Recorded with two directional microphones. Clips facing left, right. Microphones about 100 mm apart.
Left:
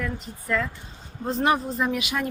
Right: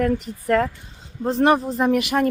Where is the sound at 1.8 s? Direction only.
50° right (ahead or behind).